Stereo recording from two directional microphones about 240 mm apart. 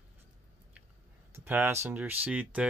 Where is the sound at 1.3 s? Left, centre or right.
Centre.